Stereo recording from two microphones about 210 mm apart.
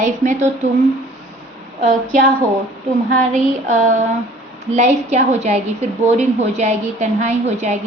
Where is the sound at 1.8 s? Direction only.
35° right (ahead or behind).